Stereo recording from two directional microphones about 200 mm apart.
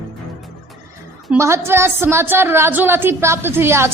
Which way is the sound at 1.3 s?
15° right (ahead or behind).